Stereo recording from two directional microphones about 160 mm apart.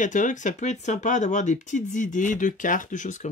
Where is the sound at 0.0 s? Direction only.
50° left (ahead or behind).